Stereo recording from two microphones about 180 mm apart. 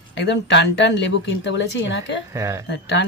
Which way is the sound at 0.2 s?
75° left (ahead or behind).